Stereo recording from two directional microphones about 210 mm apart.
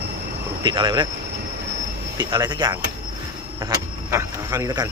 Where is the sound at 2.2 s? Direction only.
20° right (ahead or behind).